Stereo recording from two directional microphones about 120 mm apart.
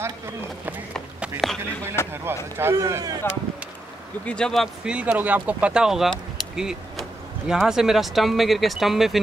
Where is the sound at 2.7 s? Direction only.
30° right (ahead or behind).